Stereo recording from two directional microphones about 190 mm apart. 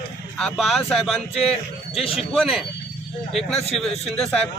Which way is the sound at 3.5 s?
35° left (ahead or behind).